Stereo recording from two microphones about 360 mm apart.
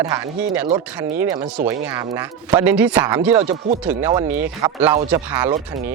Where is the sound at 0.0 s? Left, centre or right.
Centre.